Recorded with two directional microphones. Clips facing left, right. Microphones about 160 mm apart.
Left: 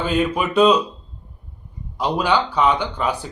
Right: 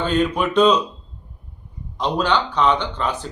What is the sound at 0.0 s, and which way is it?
Speech, 10° left (ahead or behind).